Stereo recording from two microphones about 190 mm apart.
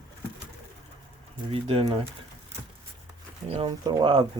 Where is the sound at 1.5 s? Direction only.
30° right (ahead or behind).